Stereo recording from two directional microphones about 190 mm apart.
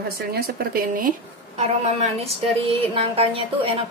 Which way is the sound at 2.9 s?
30° right (ahead or behind).